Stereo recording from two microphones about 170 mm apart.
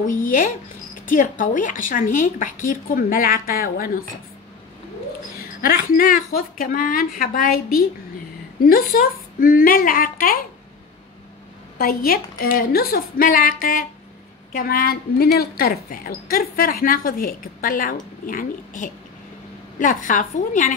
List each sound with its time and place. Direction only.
0.0 s speech: 55° left (ahead or behind)
5.4 s speech: 60° left (ahead or behind)
11.8 s speech: 60° left (ahead or behind)